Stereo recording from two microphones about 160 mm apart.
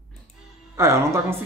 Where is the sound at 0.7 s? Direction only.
15° right (ahead or behind).